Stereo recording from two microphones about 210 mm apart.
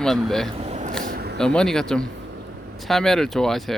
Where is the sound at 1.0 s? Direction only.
50° right (ahead or behind).